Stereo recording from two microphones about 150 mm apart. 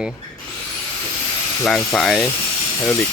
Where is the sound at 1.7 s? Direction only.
5° left (ahead or behind).